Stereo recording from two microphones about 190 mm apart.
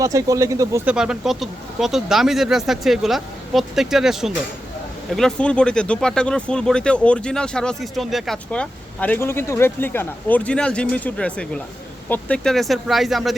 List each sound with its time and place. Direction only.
0.0 s speech: 15° right (ahead or behind)
0.9 s speech: 5° right (ahead or behind)